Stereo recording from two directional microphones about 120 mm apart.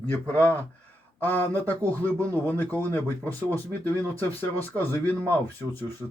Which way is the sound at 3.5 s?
15° left (ahead or behind).